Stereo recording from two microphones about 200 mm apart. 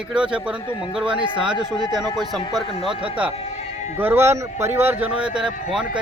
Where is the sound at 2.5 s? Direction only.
25° right (ahead or behind).